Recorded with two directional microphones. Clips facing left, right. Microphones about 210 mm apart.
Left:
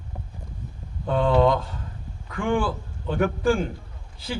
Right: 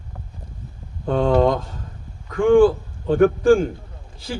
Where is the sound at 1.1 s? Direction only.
45° right (ahead or behind).